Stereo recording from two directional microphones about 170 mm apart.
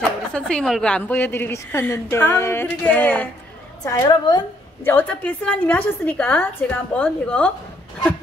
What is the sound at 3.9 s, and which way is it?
Speech, 25° left (ahead or behind).